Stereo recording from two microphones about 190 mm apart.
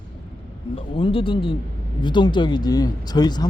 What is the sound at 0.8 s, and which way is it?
Speech, 30° left (ahead or behind).